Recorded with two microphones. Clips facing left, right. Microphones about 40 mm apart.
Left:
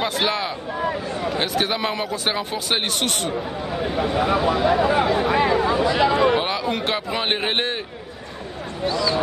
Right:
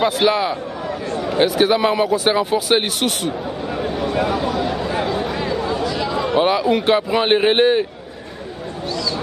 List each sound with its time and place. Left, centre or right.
0.0 s speech: centre
3.8 s speech: centre
5.3 s a sound: centre
6.3 s speech: centre
8.8 s speech: left